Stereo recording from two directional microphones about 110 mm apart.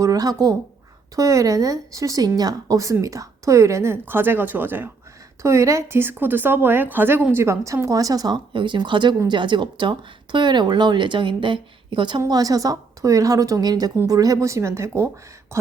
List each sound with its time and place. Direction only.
0.0 s a woman's voice: 35° right (ahead or behind)
12.2 s a woman's voice: 35° right (ahead or behind)